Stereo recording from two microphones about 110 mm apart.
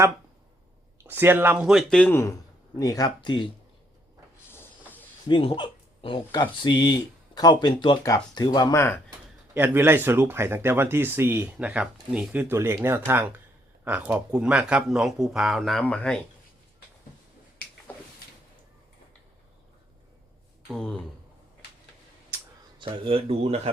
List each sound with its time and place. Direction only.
1.0 s speech: 20° right (ahead or behind)
1.9 s speech: 10° left (ahead or behind)
2.7 s speech: 35° left (ahead or behind)
5.3 s speech: 45° left (ahead or behind)
8.0 s speech: 30° left (ahead or behind)
9.6 s speech: 20° right (ahead or behind); by 15.8 s centre (ahead or behind)
15.8 s speech: 10° left (ahead or behind)
20.7 s speech: 5° left (ahead or behind)
22.8 s speech: 55° right (ahead or behind)